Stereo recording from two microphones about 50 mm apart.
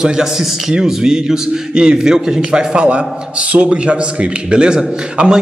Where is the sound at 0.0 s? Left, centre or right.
Centre.